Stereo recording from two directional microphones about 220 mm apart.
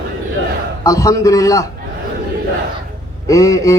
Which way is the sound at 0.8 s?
15° left (ahead or behind).